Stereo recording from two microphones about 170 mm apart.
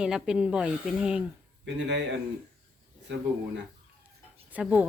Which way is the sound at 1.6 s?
90° right.